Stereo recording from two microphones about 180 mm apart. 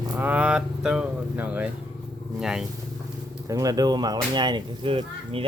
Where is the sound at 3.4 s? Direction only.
20° right (ahead or behind).